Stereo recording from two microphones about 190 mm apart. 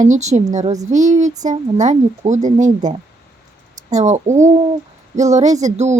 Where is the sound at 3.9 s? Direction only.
40° right (ahead or behind).